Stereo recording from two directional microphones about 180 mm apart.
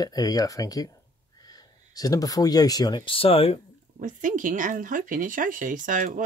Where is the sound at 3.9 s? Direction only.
45° right (ahead or behind).